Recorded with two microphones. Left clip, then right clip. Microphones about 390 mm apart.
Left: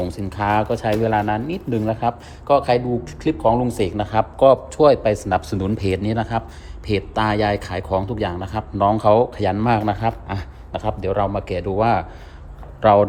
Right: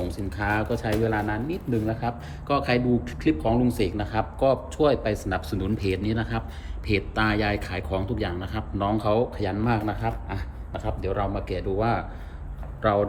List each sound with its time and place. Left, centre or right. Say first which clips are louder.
0.0 s speech: left 6 dB; centre